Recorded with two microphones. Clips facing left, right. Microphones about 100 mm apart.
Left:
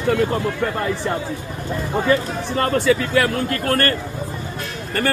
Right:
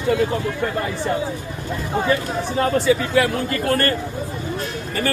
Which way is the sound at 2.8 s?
65° left (ahead or behind).